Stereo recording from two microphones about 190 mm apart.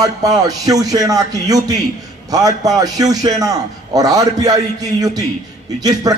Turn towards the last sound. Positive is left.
turn(degrees=-20)  # may be behind; listen again after turning